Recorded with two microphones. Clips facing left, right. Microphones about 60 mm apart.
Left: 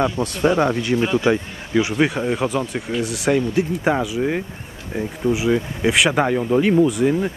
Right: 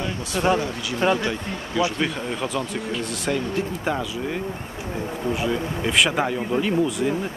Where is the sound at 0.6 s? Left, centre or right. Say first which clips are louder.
Left 8 dB; left.